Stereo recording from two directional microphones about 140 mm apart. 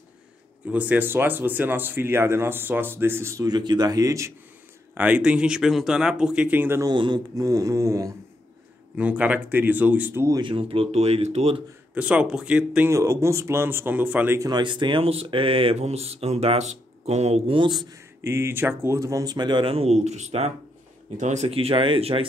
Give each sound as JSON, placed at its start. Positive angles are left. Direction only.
{"t": 0.7, "sound": "speech", "side_deg": -10}
{"t": 4.9, "sound": "speech", "side_deg": -10}
{"t": 6.8, "sound": "speech", "side_deg": -30}
{"t": 8.9, "sound": "speech", "side_deg": -10}
{"t": 10.4, "sound": "speech", "side_deg": -40}
{"t": 11.9, "sound": "speech", "side_deg": -10}
{"t": 12.9, "sound": "speech", "side_deg": -20}
{"t": 14.5, "sound": "speech", "side_deg": -35}
{"t": 17.6, "sound": "speech", "side_deg": -30}
{"t": 18.2, "sound": "speech", "side_deg": -20}